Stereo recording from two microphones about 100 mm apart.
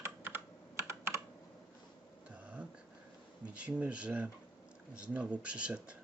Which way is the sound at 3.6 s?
10° right (ahead or behind).